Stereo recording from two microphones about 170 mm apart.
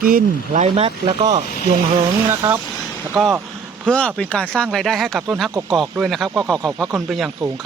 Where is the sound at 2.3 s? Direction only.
15° right (ahead or behind).